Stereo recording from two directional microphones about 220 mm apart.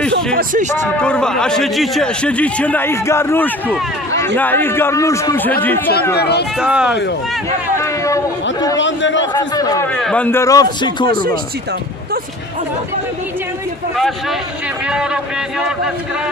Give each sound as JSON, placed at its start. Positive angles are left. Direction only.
{"t": 0.1, "sound": "speech", "side_deg": -40}
{"t": 0.8, "sound": "a man's voice", "side_deg": 5}
{"t": 6.1, "sound": "speech", "side_deg": 50}
{"t": 6.6, "sound": "a man's voice", "side_deg": -5}
{"t": 7.7, "sound": "a sound", "side_deg": 15}
{"t": 8.7, "sound": "a man's voice", "side_deg": 55}
{"t": 9.3, "sound": "a man's voice", "side_deg": 15}
{"t": 9.9, "sound": "a man's voice", "side_deg": 5}